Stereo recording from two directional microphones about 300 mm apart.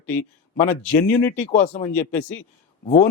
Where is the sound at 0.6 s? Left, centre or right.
Left.